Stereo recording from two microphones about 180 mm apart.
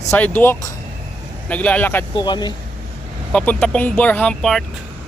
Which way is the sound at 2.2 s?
25° left (ahead or behind).